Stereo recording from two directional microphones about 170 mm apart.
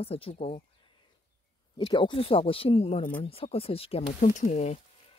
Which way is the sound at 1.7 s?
30° left (ahead or behind).